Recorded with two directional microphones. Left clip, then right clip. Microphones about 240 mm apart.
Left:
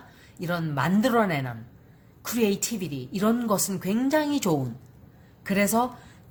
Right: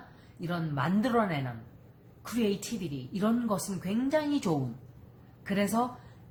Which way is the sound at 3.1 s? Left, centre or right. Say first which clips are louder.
Left 6 dB; left.